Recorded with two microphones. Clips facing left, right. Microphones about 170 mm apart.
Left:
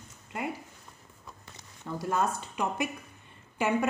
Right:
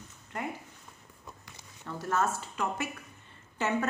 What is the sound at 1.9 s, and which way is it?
A woman's voice, 15° left (ahead or behind).